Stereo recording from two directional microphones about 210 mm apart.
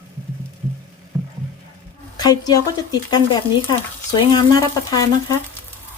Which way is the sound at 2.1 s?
20° left (ahead or behind).